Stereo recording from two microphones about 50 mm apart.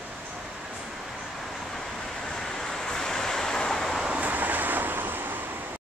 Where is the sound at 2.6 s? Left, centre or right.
Centre.